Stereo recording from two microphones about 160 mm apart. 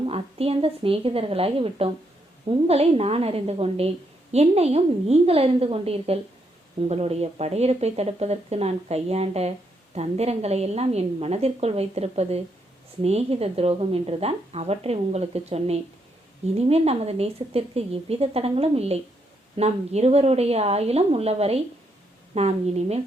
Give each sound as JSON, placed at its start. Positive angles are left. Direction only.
{"t": 0.0, "sound": "a woman's voice", "side_deg": -35}